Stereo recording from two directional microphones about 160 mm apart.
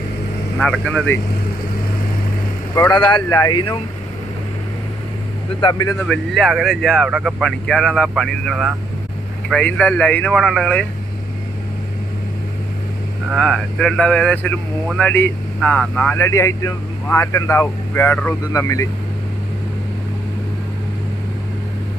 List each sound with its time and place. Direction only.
0.6 s speech: 5° left (ahead or behind)
2.7 s speech: 20° left (ahead or behind)
3.0 s speech: 30° left (ahead or behind)
5.5 s speech: 30° left (ahead or behind)
6.1 s speech: centre (ahead or behind)
13.3 s speech: centre (ahead or behind); by 18.9 s 20° left (ahead or behind)